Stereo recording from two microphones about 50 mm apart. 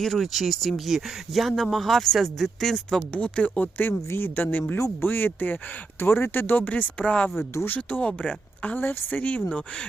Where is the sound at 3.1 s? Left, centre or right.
Left.